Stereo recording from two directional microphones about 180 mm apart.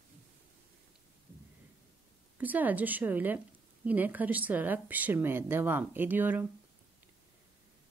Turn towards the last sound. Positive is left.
turn(degrees=-10)  # may be behind; listen again after turning